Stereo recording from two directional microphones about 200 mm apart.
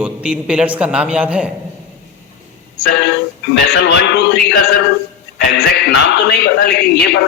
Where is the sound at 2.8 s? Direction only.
60° left (ahead or behind).